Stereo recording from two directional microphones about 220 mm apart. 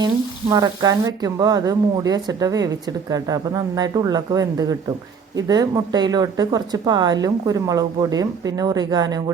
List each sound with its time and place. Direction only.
0.5 s speech: 15° right (ahead or behind)